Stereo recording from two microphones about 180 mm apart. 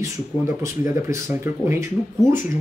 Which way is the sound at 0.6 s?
15° right (ahead or behind).